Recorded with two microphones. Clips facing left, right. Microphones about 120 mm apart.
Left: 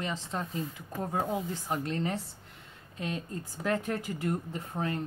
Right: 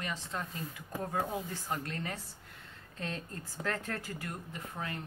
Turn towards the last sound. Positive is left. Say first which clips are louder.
# left 7 dB
turn(degrees=30)  # may be behind; listen again after turning